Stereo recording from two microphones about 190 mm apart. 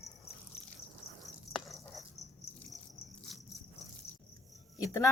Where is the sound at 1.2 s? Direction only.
Centre (ahead or behind).